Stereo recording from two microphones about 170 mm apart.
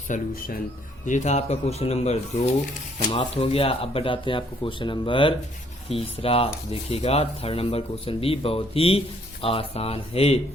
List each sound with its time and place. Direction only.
0.1 s speech: 55° left (ahead or behind)
1.0 s speech: 45° left (ahead or behind)